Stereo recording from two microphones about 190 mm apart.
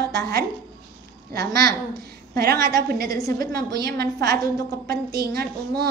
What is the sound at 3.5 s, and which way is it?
Speech, 55° right (ahead or behind).